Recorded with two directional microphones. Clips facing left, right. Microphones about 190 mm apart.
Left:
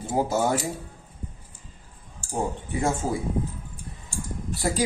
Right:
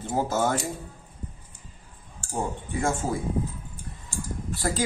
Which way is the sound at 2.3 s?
20° left (ahead or behind).